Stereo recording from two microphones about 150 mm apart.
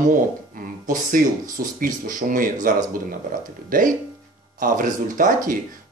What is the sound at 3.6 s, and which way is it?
Speech, 65° right (ahead or behind).